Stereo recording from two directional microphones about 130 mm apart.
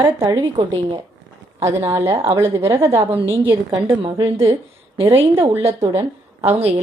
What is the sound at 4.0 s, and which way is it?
A woman's voice, 40° right (ahead or behind).